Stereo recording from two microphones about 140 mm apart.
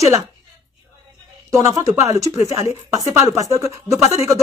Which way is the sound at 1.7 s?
25° right (ahead or behind).